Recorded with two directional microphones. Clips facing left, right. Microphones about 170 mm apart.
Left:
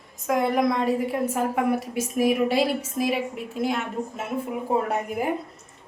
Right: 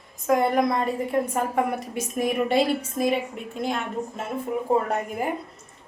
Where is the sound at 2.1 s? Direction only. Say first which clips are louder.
Left 1 dB; 5° left (ahead or behind).